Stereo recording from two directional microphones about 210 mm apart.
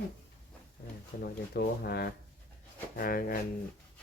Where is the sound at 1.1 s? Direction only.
45° left (ahead or behind).